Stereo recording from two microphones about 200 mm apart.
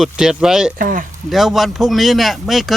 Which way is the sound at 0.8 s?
40° right (ahead or behind).